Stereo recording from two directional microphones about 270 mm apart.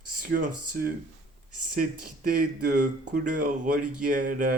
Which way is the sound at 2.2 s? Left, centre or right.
Right.